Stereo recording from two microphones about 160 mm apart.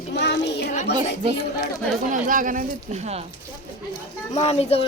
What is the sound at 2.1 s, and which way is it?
Speech, 55° right (ahead or behind).